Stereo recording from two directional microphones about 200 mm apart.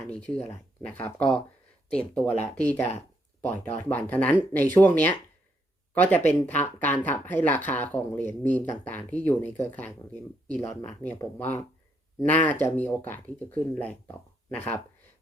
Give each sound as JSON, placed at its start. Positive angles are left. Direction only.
{"t": 0.1, "sound": "speech", "side_deg": 5}
{"t": 3.4, "sound": "speech", "side_deg": 35}
{"t": 3.8, "sound": "speech", "side_deg": 10}